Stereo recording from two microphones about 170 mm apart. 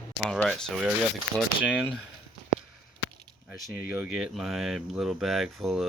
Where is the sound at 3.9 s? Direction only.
5° right (ahead or behind).